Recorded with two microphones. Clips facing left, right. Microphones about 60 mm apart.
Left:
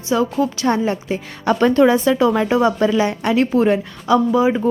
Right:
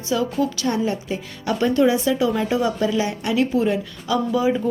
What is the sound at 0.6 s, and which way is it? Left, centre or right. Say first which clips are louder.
A woman's voice: left 4 dB; left.